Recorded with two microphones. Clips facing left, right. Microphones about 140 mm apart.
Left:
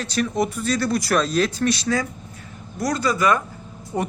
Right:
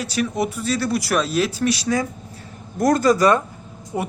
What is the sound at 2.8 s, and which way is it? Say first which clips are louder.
Speech: right 5 dB; 50° right (ahead or behind).